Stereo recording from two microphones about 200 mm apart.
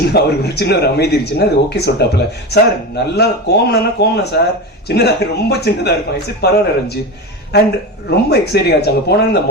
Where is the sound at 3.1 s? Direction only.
55° left (ahead or behind).